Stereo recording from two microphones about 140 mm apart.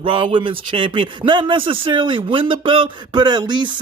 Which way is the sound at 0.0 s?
40° right (ahead or behind).